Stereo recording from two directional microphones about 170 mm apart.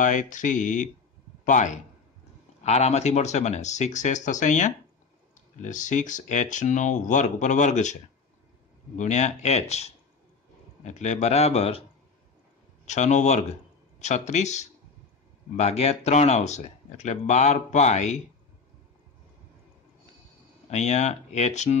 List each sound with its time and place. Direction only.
0.0 s a man's voice: 50° left (ahead or behind)
12.8 s speech: 45° left (ahead or behind)
20.7 s speech: 40° left (ahead or behind)